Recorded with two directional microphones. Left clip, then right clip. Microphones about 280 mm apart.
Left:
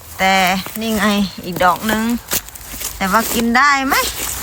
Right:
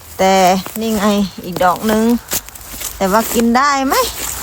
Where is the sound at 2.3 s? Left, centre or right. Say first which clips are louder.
Even; centre.